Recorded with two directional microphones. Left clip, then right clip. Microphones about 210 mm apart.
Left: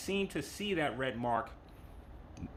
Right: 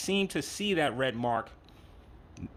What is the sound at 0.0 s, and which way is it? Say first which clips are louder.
Speech: right 5 dB; 40° right (ahead or behind).